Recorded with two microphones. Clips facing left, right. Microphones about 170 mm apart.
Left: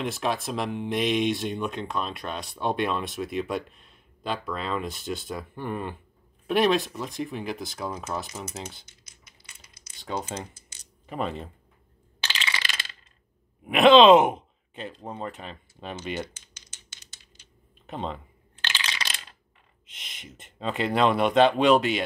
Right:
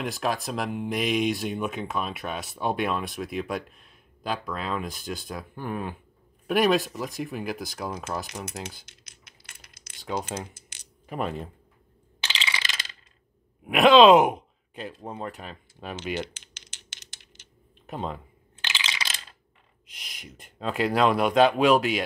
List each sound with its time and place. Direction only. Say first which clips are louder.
0.0 s speech: even; centre (ahead or behind)
8.8 s typing: right 2 dB; 65° right (ahead or behind)
10.0 s speech: right 1 dB; 5° right (ahead or behind)
12.2 s coin: even; 15° right (ahead or behind)
13.7 s speech: left 1 dB; centre (ahead or behind)
17.8 s speech: even; 5° right (ahead or behind)
18.6 s coin: left 1 dB; 10° right (ahead or behind)
19.9 s speech: even; centre (ahead or behind)